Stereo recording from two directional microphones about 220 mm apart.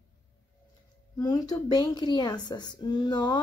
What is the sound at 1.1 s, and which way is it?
A woman's voice, 15° left (ahead or behind).